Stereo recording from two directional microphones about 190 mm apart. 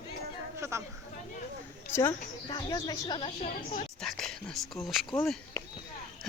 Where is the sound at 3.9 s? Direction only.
Centre (ahead or behind).